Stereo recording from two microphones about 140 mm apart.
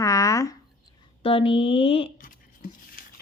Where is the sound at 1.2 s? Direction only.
40° left (ahead or behind).